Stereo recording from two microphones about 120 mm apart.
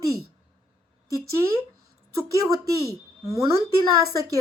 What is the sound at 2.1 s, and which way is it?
Speech, 30° right (ahead or behind).